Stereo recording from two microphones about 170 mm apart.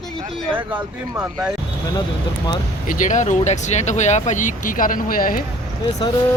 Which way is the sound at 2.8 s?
50° left (ahead or behind).